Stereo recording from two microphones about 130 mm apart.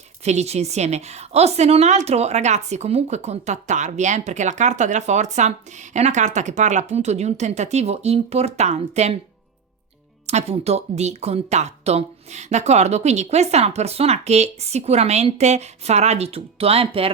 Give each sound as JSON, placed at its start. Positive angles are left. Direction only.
{"t": 0.2, "sound": "a woman's voice", "side_deg": -55}
{"t": 10.2, "sound": "a woman's voice", "side_deg": -55}